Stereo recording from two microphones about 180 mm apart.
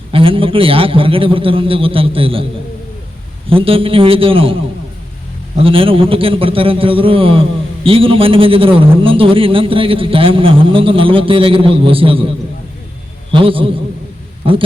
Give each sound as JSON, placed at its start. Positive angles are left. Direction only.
{"t": 0.1, "sound": "a man's voice", "side_deg": -30}
{"t": 3.5, "sound": "a man's voice", "side_deg": -30}
{"t": 5.5, "sound": "a man's voice", "side_deg": -30}
{"t": 13.3, "sound": "a man's voice", "side_deg": -30}